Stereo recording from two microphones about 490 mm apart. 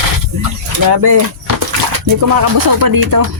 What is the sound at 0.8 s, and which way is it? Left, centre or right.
Speech, right.